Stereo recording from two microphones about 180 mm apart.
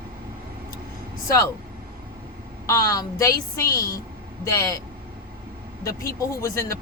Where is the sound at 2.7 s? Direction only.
20° left (ahead or behind).